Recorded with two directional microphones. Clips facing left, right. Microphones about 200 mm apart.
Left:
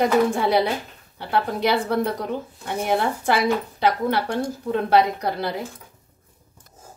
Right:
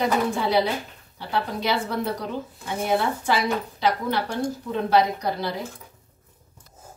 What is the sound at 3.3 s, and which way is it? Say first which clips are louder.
A woman's voice: left 5 dB; 55° left (ahead or behind).